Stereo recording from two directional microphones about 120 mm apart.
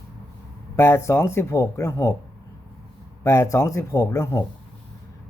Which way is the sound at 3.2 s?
25° left (ahead or behind).